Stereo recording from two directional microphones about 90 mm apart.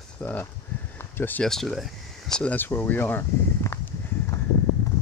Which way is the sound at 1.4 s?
5° left (ahead or behind).